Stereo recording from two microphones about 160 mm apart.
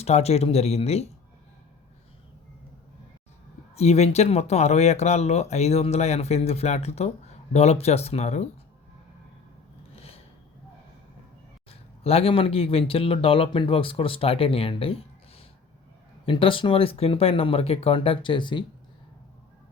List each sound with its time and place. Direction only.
0.0 s speech: 40° left (ahead or behind)
3.8 s speech: 40° left (ahead or behind)
9.9 s a sound: 40° left (ahead or behind)
11.7 s speech: 40° left (ahead or behind)